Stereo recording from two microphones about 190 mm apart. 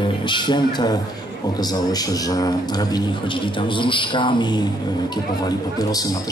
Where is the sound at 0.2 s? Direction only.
25° left (ahead or behind).